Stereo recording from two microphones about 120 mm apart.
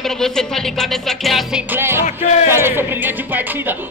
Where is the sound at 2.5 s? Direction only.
20° right (ahead or behind).